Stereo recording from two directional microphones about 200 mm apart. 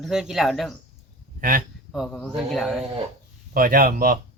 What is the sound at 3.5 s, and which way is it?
Speech, 45° right (ahead or behind).